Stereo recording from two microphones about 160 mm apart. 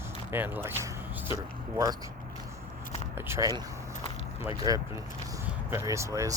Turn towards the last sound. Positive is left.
turn(degrees=-20)  # may be behind; listen again after turning